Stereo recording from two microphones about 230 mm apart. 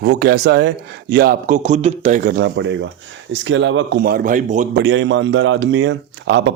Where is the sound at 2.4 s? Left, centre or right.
Right.